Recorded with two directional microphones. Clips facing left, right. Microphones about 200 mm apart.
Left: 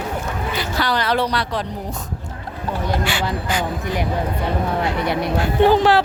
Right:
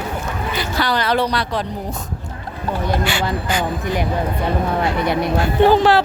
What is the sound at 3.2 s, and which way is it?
Speech, 50° right (ahead or behind).